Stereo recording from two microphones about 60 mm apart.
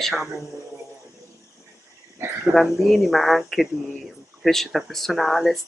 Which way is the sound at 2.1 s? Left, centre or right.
Right.